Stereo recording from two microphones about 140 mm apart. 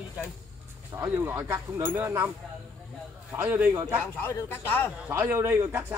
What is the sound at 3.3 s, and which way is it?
Speech, 15° right (ahead or behind).